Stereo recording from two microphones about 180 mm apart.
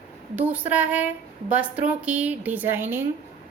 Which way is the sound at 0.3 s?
10° right (ahead or behind).